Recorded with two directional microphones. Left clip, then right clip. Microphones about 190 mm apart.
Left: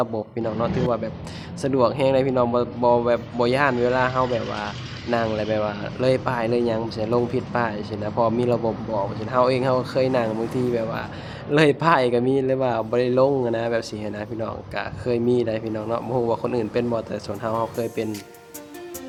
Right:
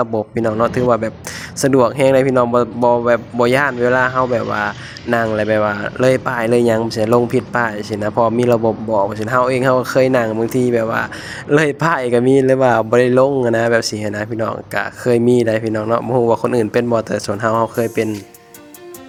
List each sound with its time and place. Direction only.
0.0 s speech: 30° right (ahead or behind)